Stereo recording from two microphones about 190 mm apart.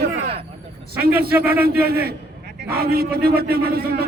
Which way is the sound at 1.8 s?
55° right (ahead or behind).